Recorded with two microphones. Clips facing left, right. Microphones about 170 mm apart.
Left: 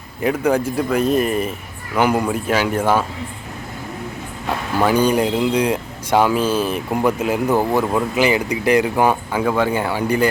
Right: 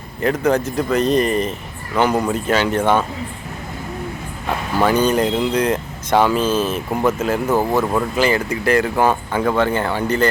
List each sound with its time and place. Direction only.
0.2 s speech: 10° left (ahead or behind)
4.8 s speech: 10° left (ahead or behind)